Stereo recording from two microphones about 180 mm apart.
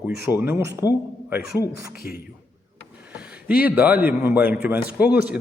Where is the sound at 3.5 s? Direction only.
10° right (ahead or behind).